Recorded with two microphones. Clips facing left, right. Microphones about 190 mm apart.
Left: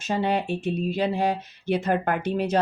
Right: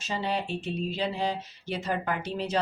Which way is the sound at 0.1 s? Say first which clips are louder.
Left 6 dB; 55° left (ahead or behind).